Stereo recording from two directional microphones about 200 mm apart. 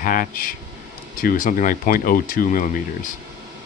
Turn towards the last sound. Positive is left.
turn(degrees=40)  # may be behind; listen again after turning